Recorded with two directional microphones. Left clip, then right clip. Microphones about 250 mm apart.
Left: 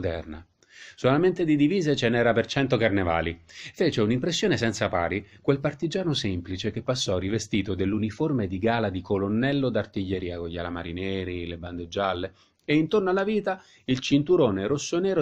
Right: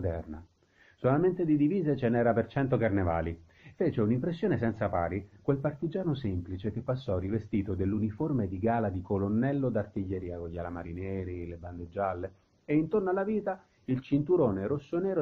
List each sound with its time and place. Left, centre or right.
0.0 s speech: left